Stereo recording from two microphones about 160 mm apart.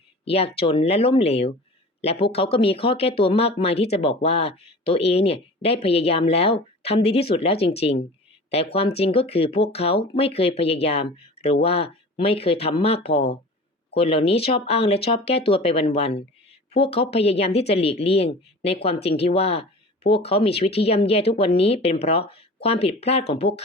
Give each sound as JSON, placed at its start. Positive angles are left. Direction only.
{"t": 0.3, "sound": "speech", "side_deg": 40}
{"t": 11.2, "sound": "a sound", "side_deg": 40}
{"t": 11.6, "sound": "speech", "side_deg": 40}
{"t": 13.1, "sound": "speech", "side_deg": 90}
{"t": 13.9, "sound": "speech", "side_deg": 40}
{"t": 18.9, "sound": "speech", "side_deg": 90}
{"t": 19.2, "sound": "speech", "side_deg": 40}